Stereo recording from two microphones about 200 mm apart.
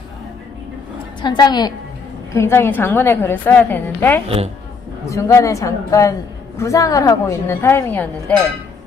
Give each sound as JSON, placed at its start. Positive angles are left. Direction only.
{"t": 1.2, "sound": "a woman's voice", "side_deg": 20}